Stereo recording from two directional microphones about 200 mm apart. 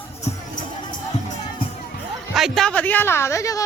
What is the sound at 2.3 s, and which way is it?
Music, centre (ahead or behind).